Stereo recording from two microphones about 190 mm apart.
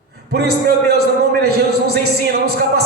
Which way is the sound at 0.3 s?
60° right (ahead or behind).